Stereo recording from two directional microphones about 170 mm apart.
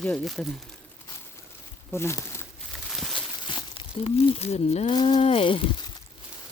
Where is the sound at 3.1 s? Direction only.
30° left (ahead or behind).